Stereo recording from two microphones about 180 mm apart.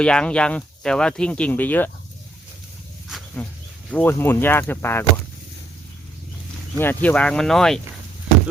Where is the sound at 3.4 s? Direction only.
10° left (ahead or behind).